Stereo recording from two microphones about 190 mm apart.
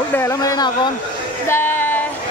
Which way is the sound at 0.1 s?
15° left (ahead or behind).